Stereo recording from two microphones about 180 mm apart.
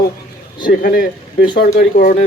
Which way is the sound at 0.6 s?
50° left (ahead or behind).